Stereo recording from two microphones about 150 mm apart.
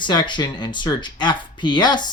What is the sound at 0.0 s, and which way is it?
Speech, 30° left (ahead or behind).